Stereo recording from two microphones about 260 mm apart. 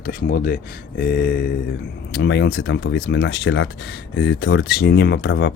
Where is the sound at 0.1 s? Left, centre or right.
Left.